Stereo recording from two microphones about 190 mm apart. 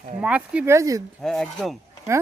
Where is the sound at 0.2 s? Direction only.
5° right (ahead or behind).